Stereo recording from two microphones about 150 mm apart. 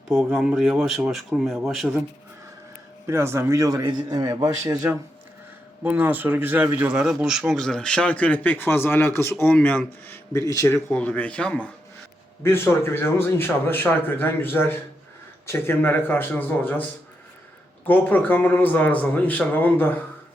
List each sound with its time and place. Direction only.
0.1 s speech: centre (ahead or behind)
3.1 s a man's voice: 15° right (ahead or behind)
5.8 s speech: 10° right (ahead or behind); by 10.8 s 20° left (ahead or behind)
10.8 s speech: 10° left (ahead or behind)
17.8 s speech: 10° left (ahead or behind)